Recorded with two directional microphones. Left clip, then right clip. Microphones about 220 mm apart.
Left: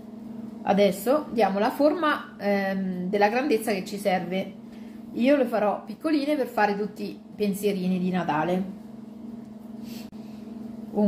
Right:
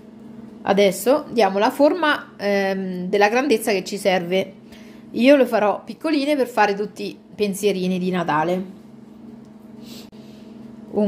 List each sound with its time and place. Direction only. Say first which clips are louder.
0.7 s a woman's voice: right 5 dB; 45° right (ahead or behind)